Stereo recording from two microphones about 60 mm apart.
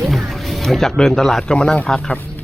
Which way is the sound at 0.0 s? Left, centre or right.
Centre.